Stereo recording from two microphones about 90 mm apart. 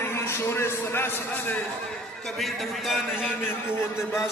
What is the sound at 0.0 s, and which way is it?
A man's voice, 25° left (ahead or behind).